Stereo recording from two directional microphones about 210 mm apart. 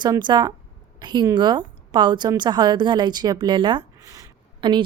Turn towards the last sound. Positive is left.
turn(degrees=-20)  # may be behind; listen again after turning